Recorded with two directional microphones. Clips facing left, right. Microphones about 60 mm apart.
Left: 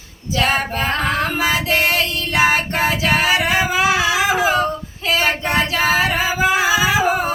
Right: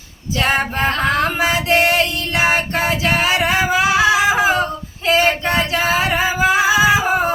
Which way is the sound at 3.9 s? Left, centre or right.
Right.